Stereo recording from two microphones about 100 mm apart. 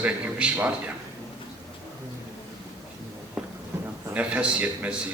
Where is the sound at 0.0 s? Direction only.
15° right (ahead or behind).